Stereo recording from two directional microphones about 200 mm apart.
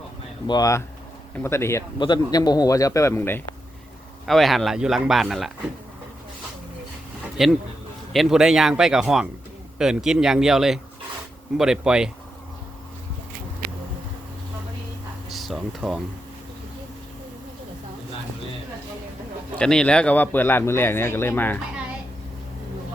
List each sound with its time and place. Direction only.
0.4 s a man's voice: 20° left (ahead or behind); by 5.5 s centre (ahead or behind)
7.4 s speech: centre (ahead or behind)
15.3 s a sound: centre (ahead or behind)
19.5 s a man's voice: 5° left (ahead or behind)